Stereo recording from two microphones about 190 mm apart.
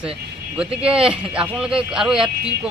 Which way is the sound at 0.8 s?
30° right (ahead or behind).